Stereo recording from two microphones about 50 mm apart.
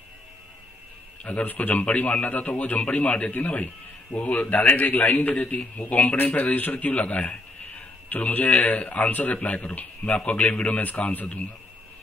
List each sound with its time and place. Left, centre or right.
1.2 s a man's voice: left